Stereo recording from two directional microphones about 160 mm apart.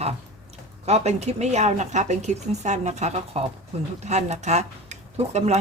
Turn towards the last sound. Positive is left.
turn(degrees=-45)  # may be behind; listen again after turning